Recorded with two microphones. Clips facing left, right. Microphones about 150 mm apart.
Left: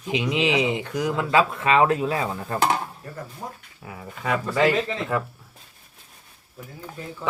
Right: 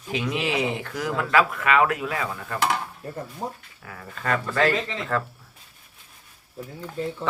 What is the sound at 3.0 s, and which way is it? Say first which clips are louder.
Speech: right 3 dB; 30° right (ahead or behind).